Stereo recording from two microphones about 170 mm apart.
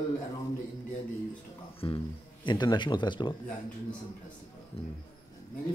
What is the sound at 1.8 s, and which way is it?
Speech, 30° left (ahead or behind).